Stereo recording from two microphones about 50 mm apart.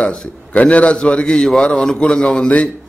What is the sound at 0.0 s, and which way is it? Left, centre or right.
A man's voice, left.